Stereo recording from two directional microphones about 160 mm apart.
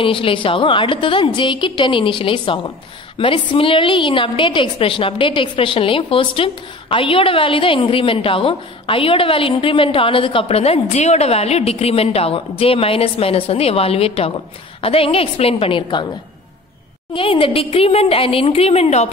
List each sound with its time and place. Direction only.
0.0 s a woman's voice: 35° left (ahead or behind)
17.1 s a woman's voice: 35° left (ahead or behind)